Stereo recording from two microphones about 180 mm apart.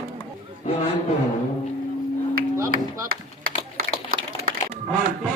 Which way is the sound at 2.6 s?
55° right (ahead or behind).